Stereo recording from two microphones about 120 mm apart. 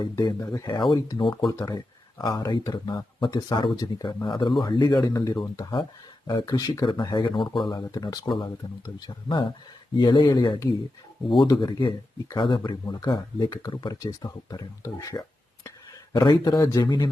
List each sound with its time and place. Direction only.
0.0 s speech: 30° left (ahead or behind)
0.8 s speech: 40° left (ahead or behind)
1.5 s speech: 30° left (ahead or behind)
16.1 s speech: 35° left (ahead or behind)